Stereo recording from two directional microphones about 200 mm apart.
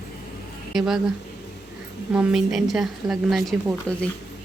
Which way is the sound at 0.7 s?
Centre (ahead or behind).